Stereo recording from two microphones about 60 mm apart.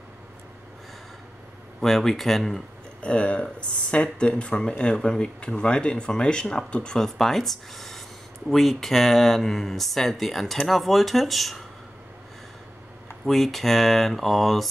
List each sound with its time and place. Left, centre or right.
1.8 s speech: centre
3.0 s speech: centre
13.2 s speech: centre